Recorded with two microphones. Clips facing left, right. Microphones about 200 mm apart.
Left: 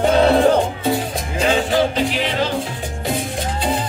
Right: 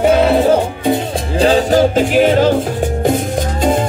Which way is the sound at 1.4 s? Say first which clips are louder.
Right 6 dB; 40° right (ahead or behind).